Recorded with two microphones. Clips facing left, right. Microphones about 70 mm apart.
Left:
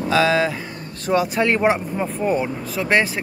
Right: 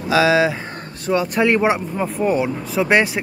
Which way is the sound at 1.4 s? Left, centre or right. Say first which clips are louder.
Right 2 dB; centre.